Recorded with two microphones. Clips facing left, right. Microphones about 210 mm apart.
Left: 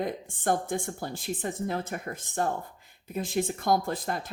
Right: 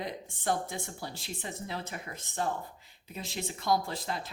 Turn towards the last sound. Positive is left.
turn(degrees=50)  # may be behind; listen again after turning